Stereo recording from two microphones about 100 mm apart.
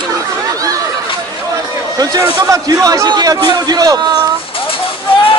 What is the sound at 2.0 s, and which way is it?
A man's voice, 40° right (ahead or behind).